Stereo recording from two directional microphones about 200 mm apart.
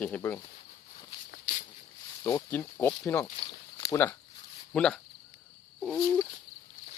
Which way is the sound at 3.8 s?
15° left (ahead or behind).